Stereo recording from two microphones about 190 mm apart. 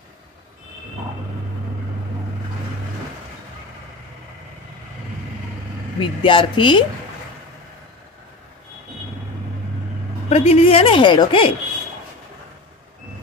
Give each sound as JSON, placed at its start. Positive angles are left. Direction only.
{"t": 5.9, "sound": "a woman's voice", "side_deg": 25}
{"t": 10.3, "sound": "a woman's voice", "side_deg": 30}